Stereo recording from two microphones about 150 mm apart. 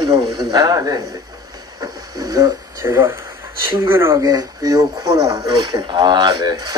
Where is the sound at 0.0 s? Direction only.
30° right (ahead or behind).